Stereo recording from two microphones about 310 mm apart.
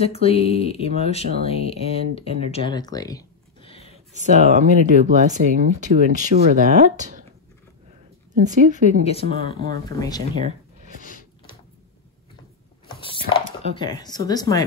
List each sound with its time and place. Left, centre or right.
0.0 s speech: centre
4.1 s speech: right
8.5 s speech: right
9.0 s speech: centre
11.0 s a sound: left
12.8 s a sound: centre
13.7 s speech: centre